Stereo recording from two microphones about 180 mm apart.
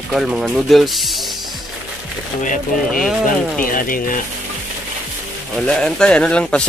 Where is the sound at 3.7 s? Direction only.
50° left (ahead or behind).